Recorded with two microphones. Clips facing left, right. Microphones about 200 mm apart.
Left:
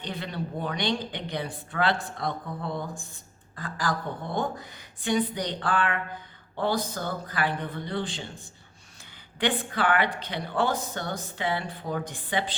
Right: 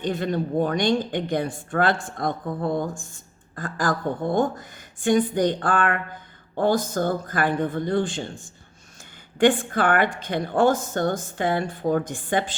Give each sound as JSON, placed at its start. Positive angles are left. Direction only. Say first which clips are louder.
{"t": 0.0, "sound": "a woman's voice", "louder": "right 9 dB", "side_deg": -45}